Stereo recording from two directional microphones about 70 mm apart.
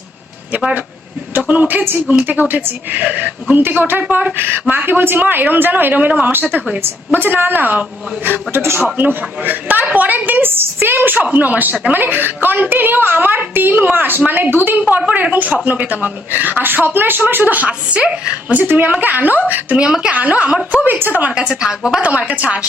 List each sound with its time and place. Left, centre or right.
1.4 s a woman's voice: right
19.8 s a woman's voice: centre